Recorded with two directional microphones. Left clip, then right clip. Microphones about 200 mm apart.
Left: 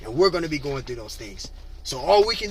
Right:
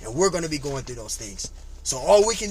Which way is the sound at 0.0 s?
25° right (ahead or behind).